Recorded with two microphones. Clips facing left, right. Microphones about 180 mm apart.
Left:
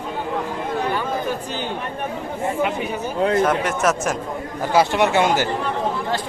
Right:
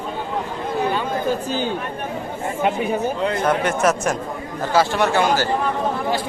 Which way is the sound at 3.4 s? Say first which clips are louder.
Right 1 dB; centre (ahead or behind).